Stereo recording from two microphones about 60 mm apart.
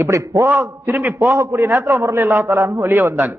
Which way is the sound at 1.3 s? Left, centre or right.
Right.